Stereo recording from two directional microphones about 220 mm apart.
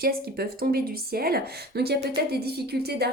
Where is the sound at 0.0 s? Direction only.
45° right (ahead or behind).